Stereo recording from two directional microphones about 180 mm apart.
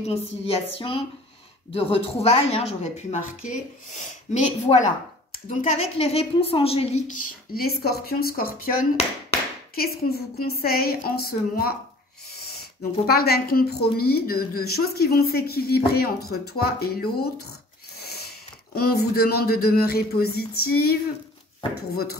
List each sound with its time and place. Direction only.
0.0 s a woman's voice: 35° left (ahead or behind); by 8.7 s 55° left (ahead or behind)
9.8 s speech: 60° left (ahead or behind)
13.0 s speech: 60° left (ahead or behind)
18.8 s speech: 60° left (ahead or behind)